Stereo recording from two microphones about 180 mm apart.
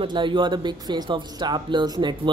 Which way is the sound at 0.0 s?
25° right (ahead or behind).